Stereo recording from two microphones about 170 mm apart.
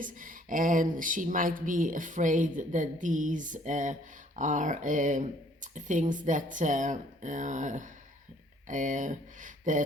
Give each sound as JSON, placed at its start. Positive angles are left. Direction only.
{"t": 0.0, "sound": "speech", "side_deg": -50}